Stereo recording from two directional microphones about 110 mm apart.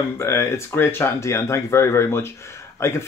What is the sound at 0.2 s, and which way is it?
Speech, 25° left (ahead or behind).